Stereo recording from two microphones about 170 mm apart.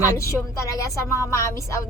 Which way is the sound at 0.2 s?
15° left (ahead or behind).